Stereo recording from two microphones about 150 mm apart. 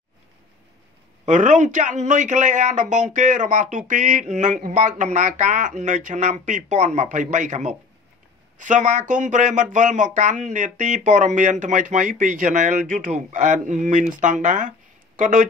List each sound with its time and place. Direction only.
1.2 s a man's voice: 55° right (ahead or behind)